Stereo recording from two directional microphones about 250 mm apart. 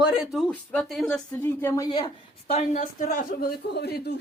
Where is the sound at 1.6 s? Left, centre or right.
Centre.